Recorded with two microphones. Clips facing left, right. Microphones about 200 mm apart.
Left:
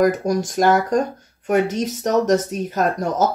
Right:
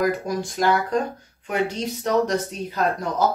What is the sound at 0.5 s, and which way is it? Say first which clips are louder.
Speech: left 4 dB; 45° left (ahead or behind).